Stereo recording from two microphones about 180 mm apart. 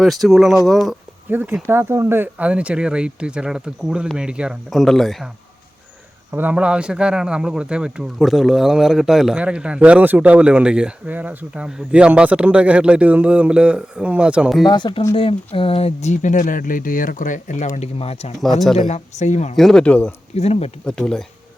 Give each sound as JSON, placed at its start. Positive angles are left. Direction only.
{"t": 0.0, "sound": "speech", "side_deg": 0}
{"t": 1.3, "sound": "speech", "side_deg": -10}
{"t": 6.3, "sound": "speech", "side_deg": -10}
{"t": 14.6, "sound": "speech", "side_deg": 25}
{"t": 18.6, "sound": "speech", "side_deg": 0}
{"t": 18.9, "sound": "speech", "side_deg": 40}
{"t": 19.5, "sound": "speech", "side_deg": 5}
{"t": 20.3, "sound": "speech", "side_deg": 35}
{"t": 20.8, "sound": "speech", "side_deg": 5}